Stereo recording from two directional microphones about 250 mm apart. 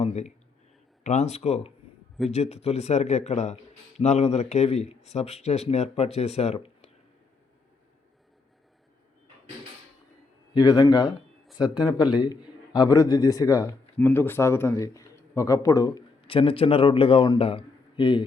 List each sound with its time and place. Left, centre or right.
0.0 s a man's voice: left
10.5 s a man's voice: centre